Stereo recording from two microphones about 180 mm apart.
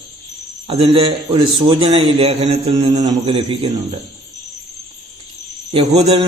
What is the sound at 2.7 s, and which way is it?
Speech, 20° right (ahead or behind).